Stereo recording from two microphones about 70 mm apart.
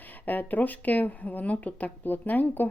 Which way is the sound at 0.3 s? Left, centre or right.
Left.